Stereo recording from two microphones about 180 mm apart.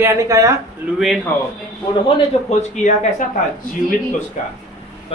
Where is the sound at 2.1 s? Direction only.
40° left (ahead or behind).